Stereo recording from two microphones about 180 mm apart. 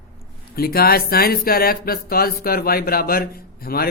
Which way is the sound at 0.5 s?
55° left (ahead or behind).